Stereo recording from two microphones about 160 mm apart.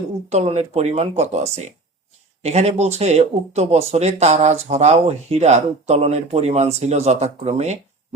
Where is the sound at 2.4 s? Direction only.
40° right (ahead or behind).